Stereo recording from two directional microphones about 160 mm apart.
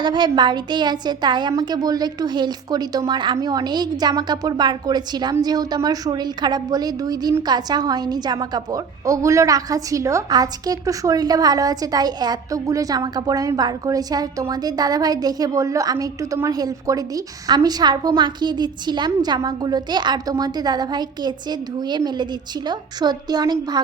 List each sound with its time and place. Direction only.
0.0 s a woman's voice: 30° right (ahead or behind)